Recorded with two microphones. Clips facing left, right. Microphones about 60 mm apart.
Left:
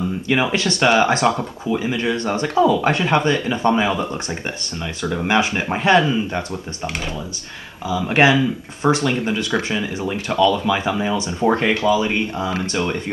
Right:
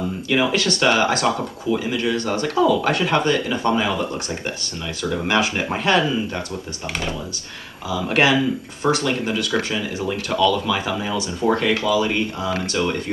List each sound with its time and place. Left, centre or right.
0.3 s speech: left
7.9 s speech: left